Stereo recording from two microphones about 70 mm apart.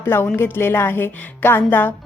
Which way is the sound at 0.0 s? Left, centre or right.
Left.